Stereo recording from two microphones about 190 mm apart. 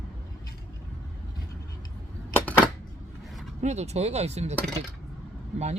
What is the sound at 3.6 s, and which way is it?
Speech, 35° right (ahead or behind).